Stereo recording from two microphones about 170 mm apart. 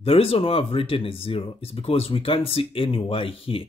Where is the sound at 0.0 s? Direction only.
35° left (ahead or behind).